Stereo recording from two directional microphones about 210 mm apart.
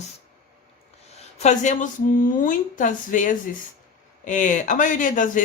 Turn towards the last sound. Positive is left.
turn(degrees=40)  # may be behind; listen again after turning